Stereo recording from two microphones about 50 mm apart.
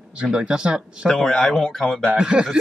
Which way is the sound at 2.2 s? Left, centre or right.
Centre.